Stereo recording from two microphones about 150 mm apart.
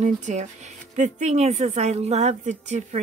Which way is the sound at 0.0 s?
50° right (ahead or behind).